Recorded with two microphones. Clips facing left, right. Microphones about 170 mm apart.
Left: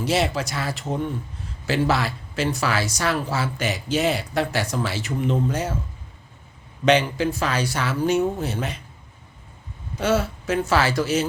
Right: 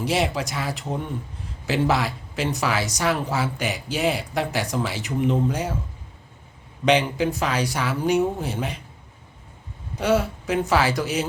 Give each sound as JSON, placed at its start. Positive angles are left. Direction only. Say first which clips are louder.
{"t": 0.0, "sound": "speech", "louder": "left 1 dB", "side_deg": -15}
{"t": 6.8, "sound": "speech", "louder": "left 1 dB", "side_deg": -15}
{"t": 10.0, "sound": "speech", "louder": "right 1 dB", "side_deg": -15}